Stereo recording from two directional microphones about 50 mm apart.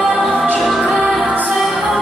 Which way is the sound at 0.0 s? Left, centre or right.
Centre.